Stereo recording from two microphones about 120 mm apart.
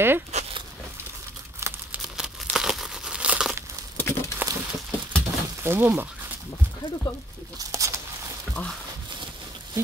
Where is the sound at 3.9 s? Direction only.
20° left (ahead or behind).